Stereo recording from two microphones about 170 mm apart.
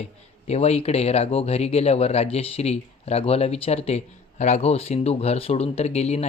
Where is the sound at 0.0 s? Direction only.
40° left (ahead or behind).